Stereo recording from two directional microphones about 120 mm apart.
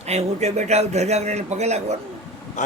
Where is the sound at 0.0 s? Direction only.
65° right (ahead or behind).